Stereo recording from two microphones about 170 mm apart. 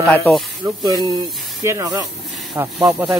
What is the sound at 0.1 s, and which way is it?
Speech, 10° left (ahead or behind).